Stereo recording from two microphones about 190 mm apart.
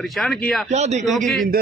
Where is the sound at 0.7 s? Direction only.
35° right (ahead or behind).